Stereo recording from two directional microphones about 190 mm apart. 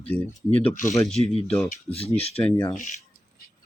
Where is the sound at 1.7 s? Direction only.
30° left (ahead or behind).